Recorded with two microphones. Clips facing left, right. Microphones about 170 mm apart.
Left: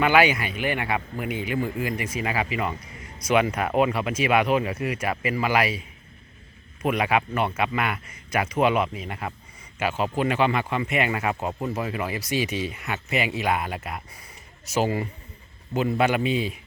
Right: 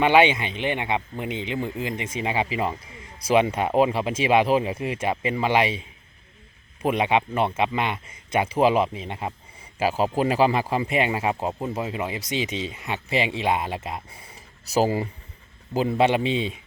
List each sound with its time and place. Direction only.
0.0 s speech: 25° right (ahead or behind)
6.8 s speech: 25° right (ahead or behind)